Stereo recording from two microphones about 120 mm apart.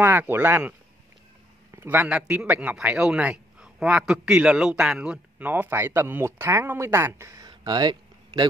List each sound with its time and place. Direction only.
0.0 s a man's voice: 15° right (ahead or behind)
5.5 s speech: 20° right (ahead or behind); by 8.5 s 40° right (ahead or behind)